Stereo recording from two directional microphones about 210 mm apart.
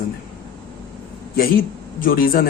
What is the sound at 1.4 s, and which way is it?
Speech, 45° left (ahead or behind).